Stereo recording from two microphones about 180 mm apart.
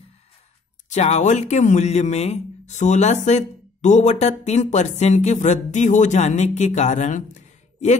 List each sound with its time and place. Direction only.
0.8 s speech: 40° left (ahead or behind)